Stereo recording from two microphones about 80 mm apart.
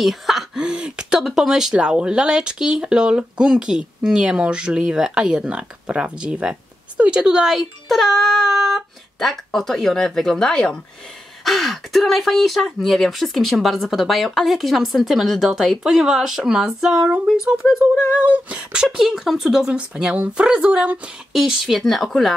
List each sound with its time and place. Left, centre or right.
0.0 s speech: centre
21.3 s speech: centre